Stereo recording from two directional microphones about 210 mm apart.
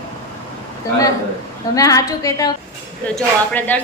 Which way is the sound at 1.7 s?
15° left (ahead or behind).